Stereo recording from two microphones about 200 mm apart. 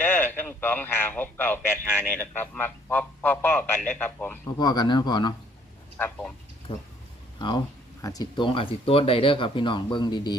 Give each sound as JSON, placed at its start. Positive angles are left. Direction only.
{"t": 0.0, "sound": "a man's voice", "side_deg": 10}
{"t": 4.5, "sound": "speech", "side_deg": 20}
{"t": 6.0, "sound": "a man's voice", "side_deg": 5}
{"t": 7.3, "sound": "speech", "side_deg": 20}